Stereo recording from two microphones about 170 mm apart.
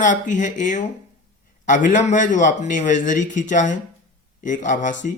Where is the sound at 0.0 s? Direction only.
50° left (ahead or behind).